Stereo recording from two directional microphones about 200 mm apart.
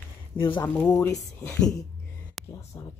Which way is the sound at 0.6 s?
10° left (ahead or behind).